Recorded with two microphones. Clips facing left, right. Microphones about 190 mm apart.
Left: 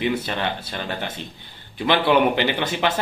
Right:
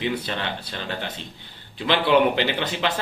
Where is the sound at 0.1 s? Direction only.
50° left (ahead or behind).